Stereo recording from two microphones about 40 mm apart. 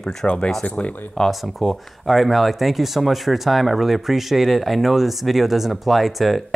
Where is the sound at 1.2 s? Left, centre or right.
Centre.